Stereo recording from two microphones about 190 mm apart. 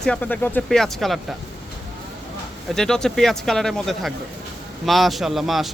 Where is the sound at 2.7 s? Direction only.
5° left (ahead or behind).